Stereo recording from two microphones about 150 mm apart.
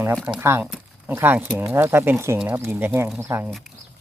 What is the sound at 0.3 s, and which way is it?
Speech, 15° right (ahead or behind).